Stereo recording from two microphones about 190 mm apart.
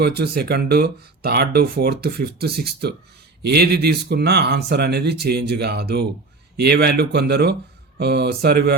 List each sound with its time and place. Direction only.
0.0 s speech: 60° right (ahead or behind)